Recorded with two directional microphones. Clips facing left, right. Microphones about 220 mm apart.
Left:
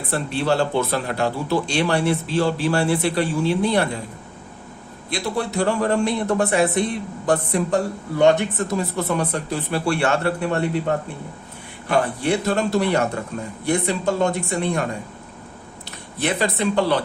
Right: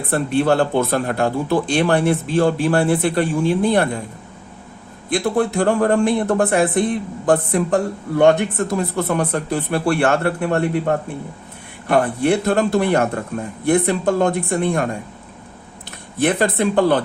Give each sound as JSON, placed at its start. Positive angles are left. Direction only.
{"t": 0.1, "sound": "speech", "side_deg": -50}
{"t": 5.0, "sound": "speech", "side_deg": -50}
{"t": 16.1, "sound": "speech", "side_deg": -50}